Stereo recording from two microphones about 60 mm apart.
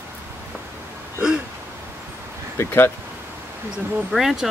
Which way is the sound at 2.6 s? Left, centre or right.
Left.